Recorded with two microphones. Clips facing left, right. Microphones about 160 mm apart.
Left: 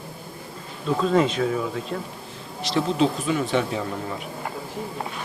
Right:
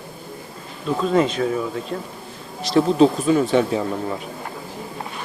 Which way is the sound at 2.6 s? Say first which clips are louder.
Right 6 dB; 40° right (ahead or behind).